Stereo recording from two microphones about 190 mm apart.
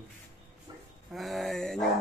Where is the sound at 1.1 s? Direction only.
Centre (ahead or behind).